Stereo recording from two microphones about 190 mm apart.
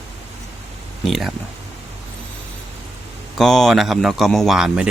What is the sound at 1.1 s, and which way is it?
Speech, centre (ahead or behind).